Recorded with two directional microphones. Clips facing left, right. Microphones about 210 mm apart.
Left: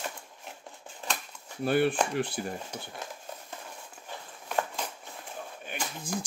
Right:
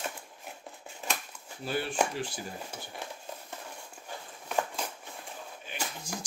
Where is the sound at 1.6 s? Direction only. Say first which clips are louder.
Left 8 dB; 55° left (ahead or behind).